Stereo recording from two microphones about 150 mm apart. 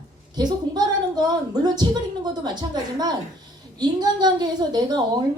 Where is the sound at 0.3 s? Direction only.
30° right (ahead or behind).